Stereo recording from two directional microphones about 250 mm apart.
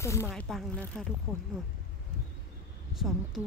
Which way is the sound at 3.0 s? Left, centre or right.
Centre.